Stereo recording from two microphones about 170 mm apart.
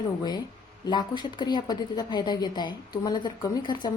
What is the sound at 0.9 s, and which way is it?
A woman's voice, 25° left (ahead or behind).